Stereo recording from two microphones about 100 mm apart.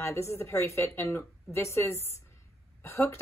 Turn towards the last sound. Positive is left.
turn(degrees=30)  # may be behind; listen again after turning